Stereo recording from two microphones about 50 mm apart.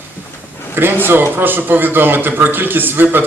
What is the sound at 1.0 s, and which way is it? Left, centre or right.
A man's voice, right.